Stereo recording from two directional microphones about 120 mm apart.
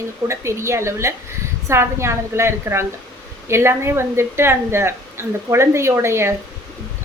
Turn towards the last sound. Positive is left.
turn(degrees=-20)  # may be behind; listen again after turning